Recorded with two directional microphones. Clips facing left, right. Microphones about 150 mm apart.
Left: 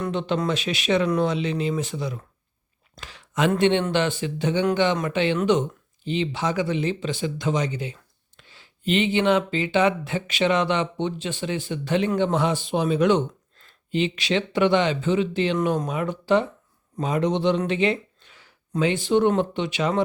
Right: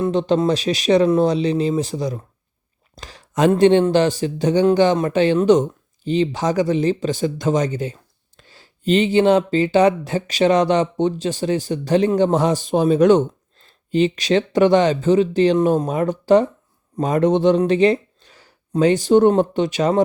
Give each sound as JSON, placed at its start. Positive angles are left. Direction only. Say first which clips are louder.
{"t": 0.0, "sound": "speech", "louder": "right 7 dB", "side_deg": -35}
{"t": 2.9, "sound": "a sound", "louder": "right 4 dB", "side_deg": -40}
{"t": 3.6, "sound": "a man's voice", "louder": "right 8 dB", "side_deg": -35}